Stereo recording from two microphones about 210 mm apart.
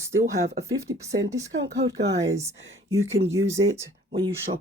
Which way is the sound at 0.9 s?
20° right (ahead or behind).